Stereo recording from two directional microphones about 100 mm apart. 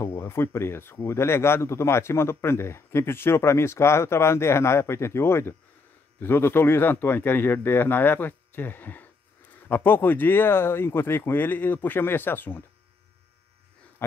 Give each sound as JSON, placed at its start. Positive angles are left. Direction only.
{"t": 0.0, "sound": "speech", "side_deg": 25}